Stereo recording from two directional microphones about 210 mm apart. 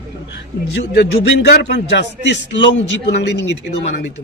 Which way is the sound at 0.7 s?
50° left (ahead or behind).